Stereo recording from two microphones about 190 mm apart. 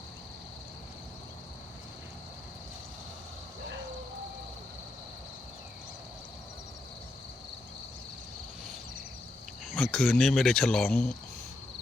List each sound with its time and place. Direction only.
9.6 s speech: centre (ahead or behind)